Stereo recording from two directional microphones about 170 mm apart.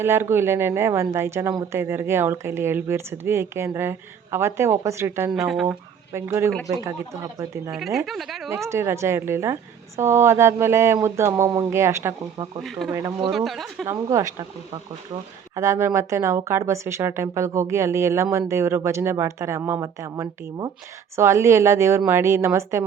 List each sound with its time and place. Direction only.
0.0 s speech: 15° right (ahead or behind)
5.3 s speech: centre (ahead or behind)
6.1 s speech: 15° right (ahead or behind)
7.7 s speech: centre (ahead or behind)
8.4 s speech: 15° right (ahead or behind)
12.6 s speech: centre (ahead or behind)
12.9 s speech: 15° right (ahead or behind)
13.3 s speech: centre (ahead or behind)
13.8 s speech: 20° right (ahead or behind)
15.5 s speech: 15° right (ahead or behind)